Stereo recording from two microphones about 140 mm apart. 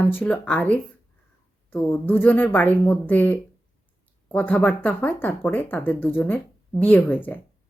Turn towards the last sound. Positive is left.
turn(degrees=10)  # may be behind; listen again after turning